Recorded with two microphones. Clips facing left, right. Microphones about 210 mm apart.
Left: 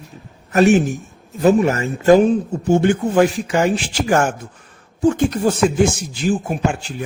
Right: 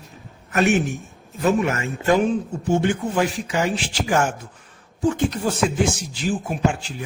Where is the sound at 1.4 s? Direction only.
35° left (ahead or behind).